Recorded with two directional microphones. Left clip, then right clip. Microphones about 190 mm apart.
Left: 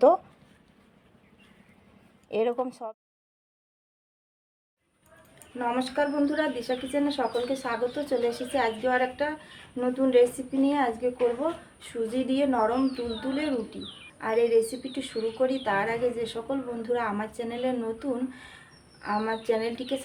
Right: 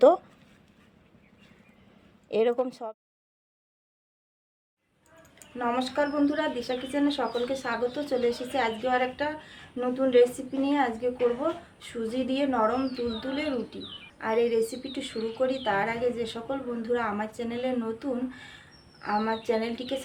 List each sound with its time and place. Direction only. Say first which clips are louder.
2.3 s a woman's voice: right 2 dB; 10° right (ahead or behind)
5.5 s speech: even; centre (ahead or behind)